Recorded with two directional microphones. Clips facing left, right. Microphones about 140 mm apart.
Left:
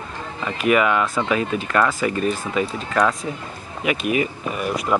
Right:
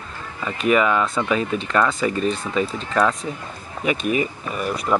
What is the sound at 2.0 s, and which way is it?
Speech, 25° right (ahead or behind).